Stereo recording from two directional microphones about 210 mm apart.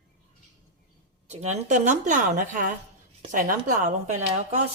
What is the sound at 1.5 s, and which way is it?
Speech, 35° right (ahead or behind).